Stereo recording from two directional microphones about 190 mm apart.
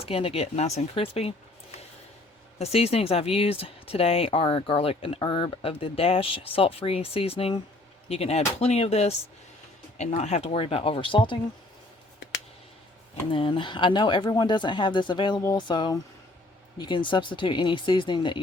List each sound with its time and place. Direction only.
0.0 s speech: 30° left (ahead or behind)
2.6 s speech: 35° left (ahead or behind)
13.3 s speech: 25° left (ahead or behind)